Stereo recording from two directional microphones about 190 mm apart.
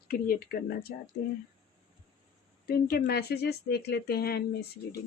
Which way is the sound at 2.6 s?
55° left (ahead or behind).